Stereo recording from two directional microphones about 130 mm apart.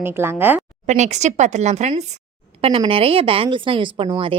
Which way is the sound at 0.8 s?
65° right (ahead or behind).